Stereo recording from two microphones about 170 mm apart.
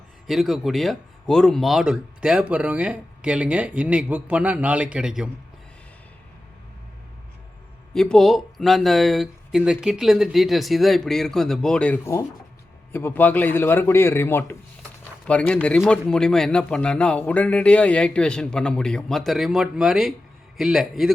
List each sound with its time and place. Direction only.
0.3 s speech: centre (ahead or behind)
7.9 s a man's voice: 5° left (ahead or behind)